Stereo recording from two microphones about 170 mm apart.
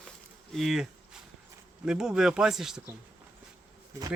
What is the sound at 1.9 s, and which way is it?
Speech, 5° right (ahead or behind).